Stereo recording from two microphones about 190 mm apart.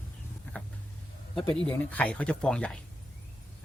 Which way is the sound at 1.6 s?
10° left (ahead or behind).